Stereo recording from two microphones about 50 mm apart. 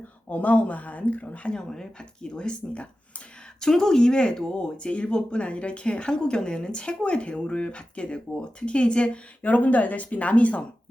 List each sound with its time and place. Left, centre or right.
0.3 s a woman's voice: left
1.5 s speech: centre